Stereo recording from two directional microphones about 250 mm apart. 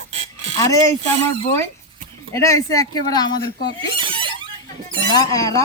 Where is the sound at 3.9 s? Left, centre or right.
Right.